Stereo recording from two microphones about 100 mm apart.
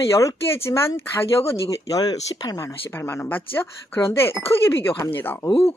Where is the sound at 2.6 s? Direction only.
25° left (ahead or behind).